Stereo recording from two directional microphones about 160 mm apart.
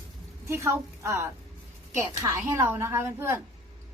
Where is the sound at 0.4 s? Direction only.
15° right (ahead or behind).